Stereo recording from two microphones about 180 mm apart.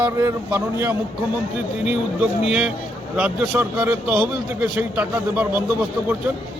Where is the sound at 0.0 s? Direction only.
20° right (ahead or behind).